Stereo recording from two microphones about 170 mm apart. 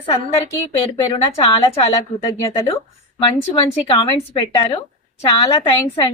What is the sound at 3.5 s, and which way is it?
A woman's voice, 30° left (ahead or behind).